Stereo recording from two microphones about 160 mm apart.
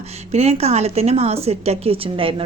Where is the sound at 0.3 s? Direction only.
40° right (ahead or behind).